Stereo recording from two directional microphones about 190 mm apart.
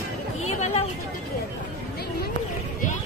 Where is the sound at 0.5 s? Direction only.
35° left (ahead or behind).